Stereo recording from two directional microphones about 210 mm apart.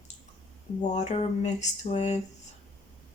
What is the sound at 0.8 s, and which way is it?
Speech, 30° left (ahead or behind).